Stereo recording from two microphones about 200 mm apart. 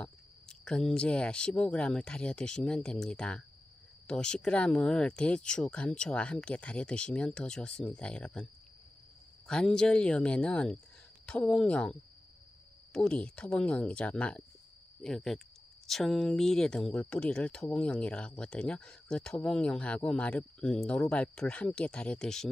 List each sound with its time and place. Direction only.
0.0 s speech: 5° left (ahead or behind)
9.5 s speech: 5° left (ahead or behind)